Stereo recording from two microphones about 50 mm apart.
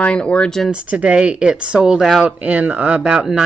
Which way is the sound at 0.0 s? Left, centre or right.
Left.